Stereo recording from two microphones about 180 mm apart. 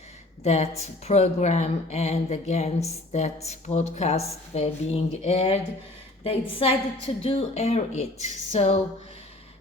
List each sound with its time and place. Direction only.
0.4 s a woman's voice: 35° left (ahead or behind)